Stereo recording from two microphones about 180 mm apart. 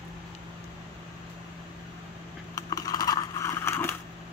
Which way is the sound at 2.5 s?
20° left (ahead or behind).